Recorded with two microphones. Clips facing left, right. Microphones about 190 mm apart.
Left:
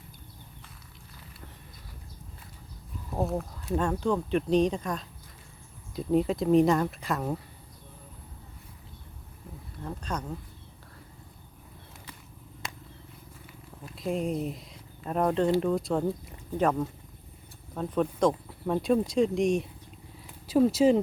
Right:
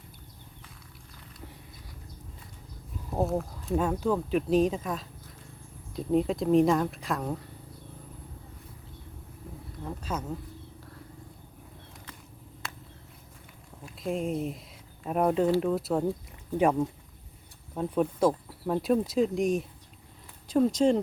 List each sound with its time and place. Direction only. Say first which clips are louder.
3.2 s speech: right 1 dB; 5° right (ahead or behind)
9.8 s speech: even; 5° right (ahead or behind)
12.6 s a sound: left 1 dB; 15° left (ahead or behind)
13.8 s speech: left 1 dB; centre (ahead or behind)
17.7 s speech: right 1 dB; 10° right (ahead or behind); by 21.0 s 5° left (ahead or behind)